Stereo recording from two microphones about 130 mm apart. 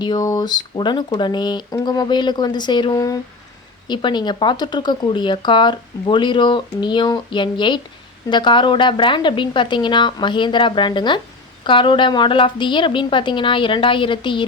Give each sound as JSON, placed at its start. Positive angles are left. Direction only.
{"t": 0.0, "sound": "speech", "side_deg": 30}